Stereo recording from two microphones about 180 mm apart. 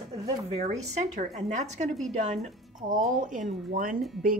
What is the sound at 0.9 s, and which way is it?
A woman's voice, 40° right (ahead or behind).